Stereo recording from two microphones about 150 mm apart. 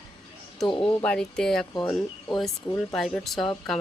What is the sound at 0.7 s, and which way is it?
Speech, 35° left (ahead or behind).